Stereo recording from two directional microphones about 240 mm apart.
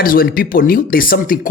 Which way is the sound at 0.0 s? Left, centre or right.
Left.